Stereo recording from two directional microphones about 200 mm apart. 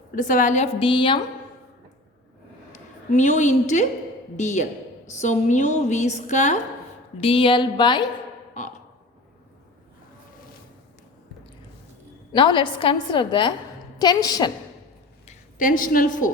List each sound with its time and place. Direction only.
0.2 s a woman's voice: 40° left (ahead or behind); by 1.2 s 25° left (ahead or behind)
2.7 s a woman's voice: 35° left (ahead or behind); by 8.1 s 20° left (ahead or behind)
12.3 s a woman's voice: 25° left (ahead or behind)
15.3 s a woman's voice: 45° left (ahead or behind)